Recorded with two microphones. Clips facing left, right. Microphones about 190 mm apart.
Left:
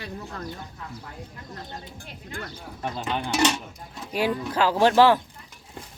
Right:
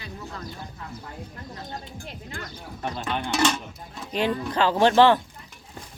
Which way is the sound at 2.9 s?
15° left (ahead or behind).